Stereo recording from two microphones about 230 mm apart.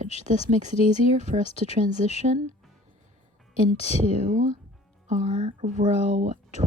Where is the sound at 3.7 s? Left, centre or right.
Right.